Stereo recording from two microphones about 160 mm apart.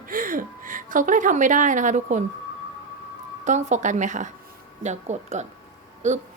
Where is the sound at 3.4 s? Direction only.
50° right (ahead or behind).